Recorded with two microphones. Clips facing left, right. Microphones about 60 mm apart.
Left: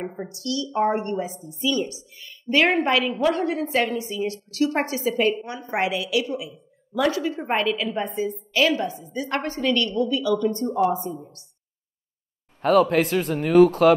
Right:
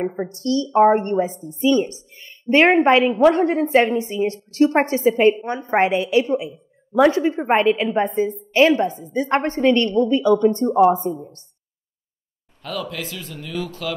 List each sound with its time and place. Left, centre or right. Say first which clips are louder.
0.0 s a woman's voice: right 7 dB; right
12.6 s a man's voice: left 11 dB; left